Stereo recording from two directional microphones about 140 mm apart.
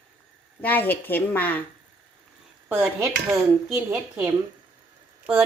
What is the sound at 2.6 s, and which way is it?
Dishes, 10° right (ahead or behind).